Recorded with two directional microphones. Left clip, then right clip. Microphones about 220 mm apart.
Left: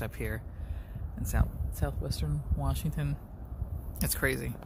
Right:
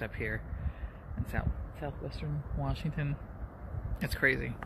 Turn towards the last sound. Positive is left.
turn(degrees=15)  # may be behind; listen again after turning